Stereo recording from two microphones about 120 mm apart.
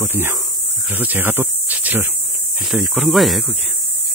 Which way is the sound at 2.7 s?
Centre (ahead or behind).